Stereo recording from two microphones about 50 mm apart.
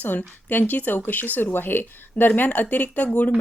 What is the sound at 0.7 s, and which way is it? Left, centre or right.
A woman's voice, left.